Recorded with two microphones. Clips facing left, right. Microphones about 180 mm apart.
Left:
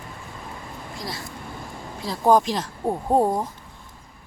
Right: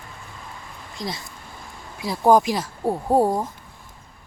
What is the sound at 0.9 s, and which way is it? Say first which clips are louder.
Speech: right 3 dB; 20° right (ahead or behind).